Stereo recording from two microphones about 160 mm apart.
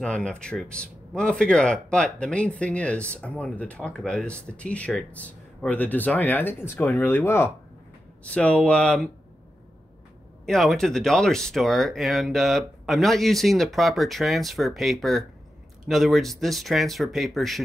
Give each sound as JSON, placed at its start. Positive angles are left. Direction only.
{"t": 0.0, "sound": "speech", "side_deg": 5}
{"t": 10.4, "sound": "speech", "side_deg": 0}